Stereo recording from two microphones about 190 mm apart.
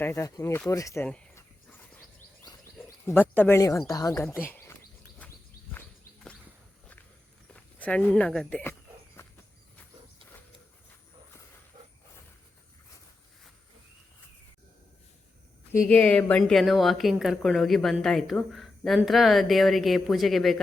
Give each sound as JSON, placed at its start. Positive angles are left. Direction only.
{"t": 0.0, "sound": "speech", "side_deg": 15}
{"t": 1.0, "sound": "a sound", "side_deg": 5}
{"t": 3.1, "sound": "speech", "side_deg": 10}
{"t": 7.5, "sound": "speech", "side_deg": 5}
{"t": 9.2, "sound": "a sound", "side_deg": 15}
{"t": 15.7, "sound": "a woman's voice", "side_deg": 10}